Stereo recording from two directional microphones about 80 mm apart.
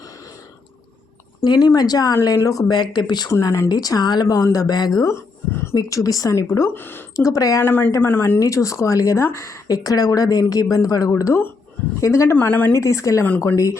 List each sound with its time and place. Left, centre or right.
1.5 s speech: left
2.7 s speech: left
3.2 s speech: left
5.0 s a sound: left
5.7 s speech: left
6.7 s speech: left
7.2 s speech: left
7.6 s speech: left
8.4 s a woman's voice: left
12.4 s speech: left
12.7 s a woman's voice: left